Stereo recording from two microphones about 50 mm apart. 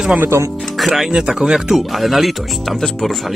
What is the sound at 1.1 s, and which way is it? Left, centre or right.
Speech, centre.